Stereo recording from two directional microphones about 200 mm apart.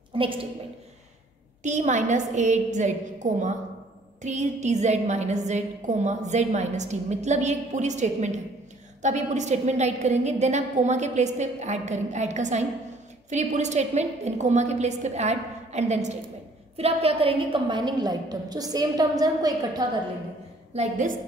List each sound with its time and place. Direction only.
0.1 s a sound: 25° right (ahead or behind)
1.6 s a woman's voice: 35° right (ahead or behind); by 19.8 s 20° right (ahead or behind)
20.7 s a woman's voice: 35° right (ahead or behind)